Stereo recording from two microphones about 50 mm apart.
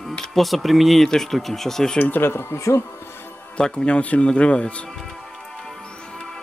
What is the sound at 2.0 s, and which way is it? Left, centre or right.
Speech, left.